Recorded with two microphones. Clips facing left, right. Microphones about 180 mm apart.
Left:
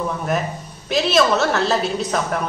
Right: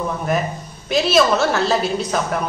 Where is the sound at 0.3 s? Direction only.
Centre (ahead or behind).